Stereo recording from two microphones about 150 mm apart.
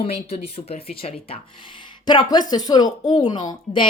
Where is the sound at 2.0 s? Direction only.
30° left (ahead or behind).